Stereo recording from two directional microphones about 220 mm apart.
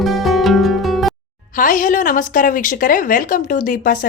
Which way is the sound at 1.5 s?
35° left (ahead or behind).